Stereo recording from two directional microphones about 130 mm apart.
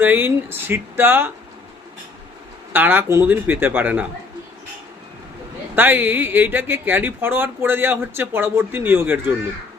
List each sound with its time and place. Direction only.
0.0 s speech: 15° right (ahead or behind)
2.7 s speech: 15° right (ahead or behind)
5.7 s speech: 15° right (ahead or behind)